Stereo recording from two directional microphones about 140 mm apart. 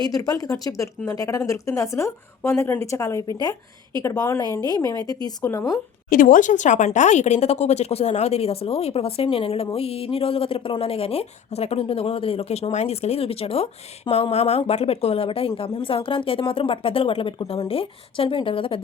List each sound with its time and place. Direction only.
0.0 s speech: 25° left (ahead or behind)
6.1 s a woman's voice: 80° left; by 18.8 s 40° left (ahead or behind)